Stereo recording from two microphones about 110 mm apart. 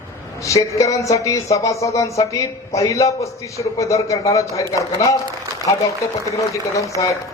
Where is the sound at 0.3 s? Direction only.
30° left (ahead or behind).